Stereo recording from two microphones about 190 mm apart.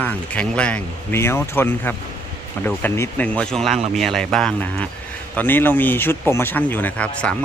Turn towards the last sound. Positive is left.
turn(degrees=5)  # may be behind; listen again after turning